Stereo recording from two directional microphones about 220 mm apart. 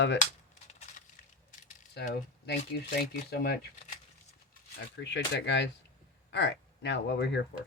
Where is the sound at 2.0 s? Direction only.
45° left (ahead or behind).